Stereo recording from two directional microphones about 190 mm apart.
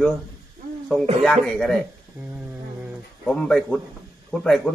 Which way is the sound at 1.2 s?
Centre (ahead or behind).